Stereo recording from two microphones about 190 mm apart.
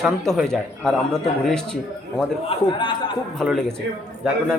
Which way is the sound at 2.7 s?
25° left (ahead or behind).